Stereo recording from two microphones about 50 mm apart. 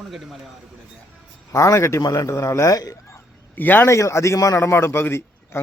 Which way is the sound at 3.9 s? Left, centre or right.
Left.